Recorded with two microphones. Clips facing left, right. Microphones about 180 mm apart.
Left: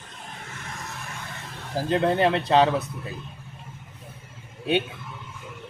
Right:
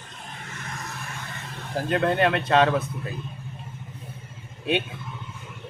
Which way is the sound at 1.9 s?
25° left (ahead or behind).